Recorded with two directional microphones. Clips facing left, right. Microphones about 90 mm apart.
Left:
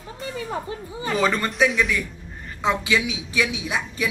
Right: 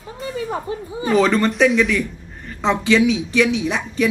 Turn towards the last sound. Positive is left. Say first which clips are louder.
# right 6 dB
turn(degrees=10)  # may be behind; listen again after turning